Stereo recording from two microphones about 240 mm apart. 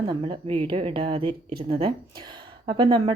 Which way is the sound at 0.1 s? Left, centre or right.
Centre.